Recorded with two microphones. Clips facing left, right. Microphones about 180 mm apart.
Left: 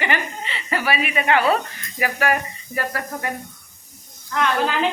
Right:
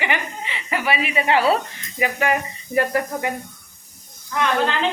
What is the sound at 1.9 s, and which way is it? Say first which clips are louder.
Speech: right 1 dB; 20° right (ahead or behind).